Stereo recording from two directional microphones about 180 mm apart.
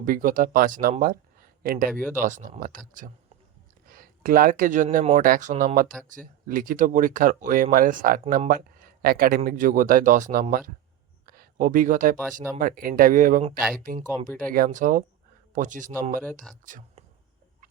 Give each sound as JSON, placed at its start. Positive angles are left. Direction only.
{"t": 0.0, "sound": "speech", "side_deg": -50}
{"t": 1.9, "sound": "speech", "side_deg": -5}
{"t": 2.2, "sound": "speech", "side_deg": -45}
{"t": 13.6, "sound": "speech", "side_deg": 0}
{"t": 14.5, "sound": "speech", "side_deg": -50}
{"t": 16.2, "sound": "speech", "side_deg": 0}
{"t": 16.6, "sound": "speech", "side_deg": -45}